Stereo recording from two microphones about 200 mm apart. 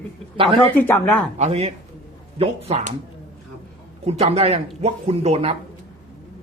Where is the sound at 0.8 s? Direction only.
10° left (ahead or behind).